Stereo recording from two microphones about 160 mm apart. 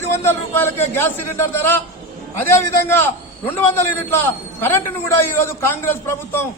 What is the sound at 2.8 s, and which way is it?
A man's voice, 10° left (ahead or behind).